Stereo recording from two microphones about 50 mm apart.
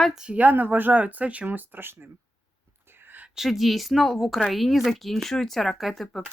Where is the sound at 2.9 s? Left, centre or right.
Right.